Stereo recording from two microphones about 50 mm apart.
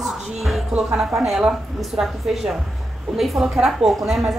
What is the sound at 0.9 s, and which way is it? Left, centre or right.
A woman's voice, centre.